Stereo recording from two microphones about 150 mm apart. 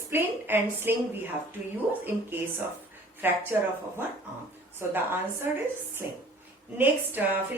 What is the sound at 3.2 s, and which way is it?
Speech, 15° right (ahead or behind).